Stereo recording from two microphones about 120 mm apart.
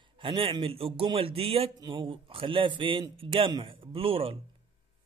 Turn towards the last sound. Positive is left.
turn(degrees=-50)  # may be behind; listen again after turning